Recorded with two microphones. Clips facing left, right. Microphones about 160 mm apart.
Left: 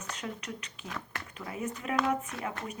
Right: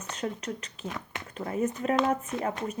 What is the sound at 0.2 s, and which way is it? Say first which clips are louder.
Speech: right 10 dB; 40° right (ahead or behind).